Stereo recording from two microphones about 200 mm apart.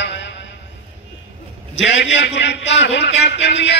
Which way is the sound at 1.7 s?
65° left (ahead or behind).